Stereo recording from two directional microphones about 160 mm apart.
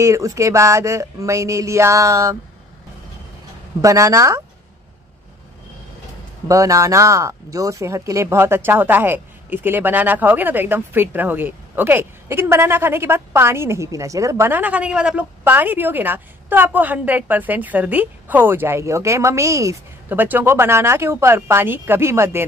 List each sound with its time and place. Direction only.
0.0 s speech: 20° right (ahead or behind)
3.8 s speech: 20° right (ahead or behind)
6.4 s speech: 20° right (ahead or behind)